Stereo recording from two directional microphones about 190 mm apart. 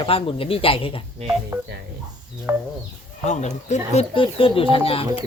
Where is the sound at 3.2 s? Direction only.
40° left (ahead or behind).